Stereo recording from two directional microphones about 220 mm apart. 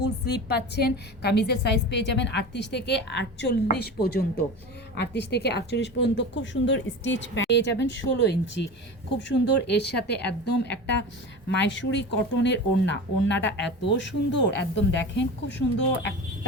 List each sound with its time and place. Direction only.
0.0 s a woman's voice: 50° left (ahead or behind)